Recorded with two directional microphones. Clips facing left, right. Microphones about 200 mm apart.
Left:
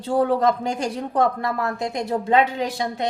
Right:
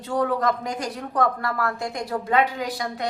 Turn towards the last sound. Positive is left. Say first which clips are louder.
# left 3 dB
turn(degrees=25)  # may be behind; listen again after turning